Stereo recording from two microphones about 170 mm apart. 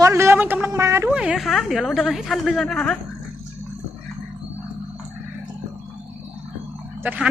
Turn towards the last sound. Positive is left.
turn(degrees=-10)  # may be behind; listen again after turning